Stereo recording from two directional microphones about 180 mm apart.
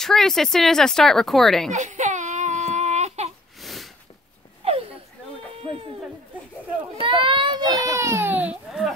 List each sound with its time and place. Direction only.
0.0 s speech: centre (ahead or behind)
1.7 s baby cry: 40° right (ahead or behind)
3.6 s sniff: centre (ahead or behind)
4.6 s a sound: 35° right (ahead or behind)
7.0 s baby cry: 30° right (ahead or behind); by 8.9 s 5° right (ahead or behind)